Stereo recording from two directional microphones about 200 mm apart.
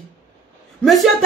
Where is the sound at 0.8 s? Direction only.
Centre (ahead or behind).